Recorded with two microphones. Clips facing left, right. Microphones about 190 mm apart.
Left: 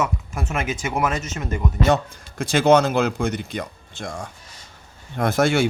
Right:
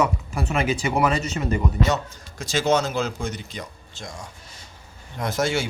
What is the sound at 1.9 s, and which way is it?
Speech, 55° left (ahead or behind).